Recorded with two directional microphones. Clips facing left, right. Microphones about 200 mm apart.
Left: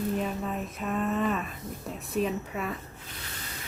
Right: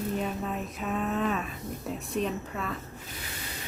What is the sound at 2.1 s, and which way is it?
Speech, 5° left (ahead or behind).